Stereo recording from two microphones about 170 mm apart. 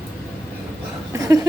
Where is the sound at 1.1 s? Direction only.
20° right (ahead or behind).